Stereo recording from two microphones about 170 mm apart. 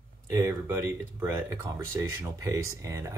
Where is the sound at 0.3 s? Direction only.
15° right (ahead or behind).